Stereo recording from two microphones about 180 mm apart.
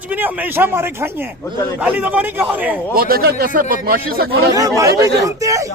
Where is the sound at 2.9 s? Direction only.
55° right (ahead or behind).